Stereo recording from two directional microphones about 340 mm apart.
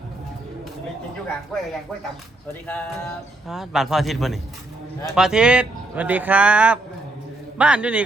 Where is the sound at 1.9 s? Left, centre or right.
Centre.